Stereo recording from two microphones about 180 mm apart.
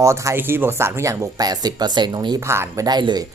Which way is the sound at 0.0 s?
15° right (ahead or behind).